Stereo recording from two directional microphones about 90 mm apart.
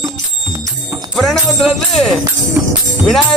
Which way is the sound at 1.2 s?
Centre (ahead or behind).